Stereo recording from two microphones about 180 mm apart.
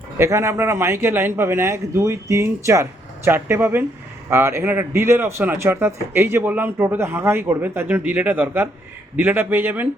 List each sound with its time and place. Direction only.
0.2 s a man's voice: 15° right (ahead or behind)